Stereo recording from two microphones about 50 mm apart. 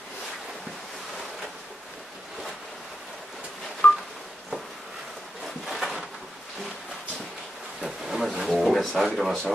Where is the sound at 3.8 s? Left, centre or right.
Left.